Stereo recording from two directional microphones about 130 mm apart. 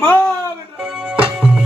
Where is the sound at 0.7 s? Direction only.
5° right (ahead or behind).